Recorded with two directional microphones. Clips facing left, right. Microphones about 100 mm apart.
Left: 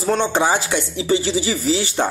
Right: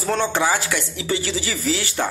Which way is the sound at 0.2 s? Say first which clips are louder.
Left 2 dB; 25° left (ahead or behind).